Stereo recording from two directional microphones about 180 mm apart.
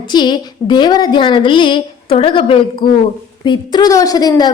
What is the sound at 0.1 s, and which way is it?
A woman's voice, 25° left (ahead or behind).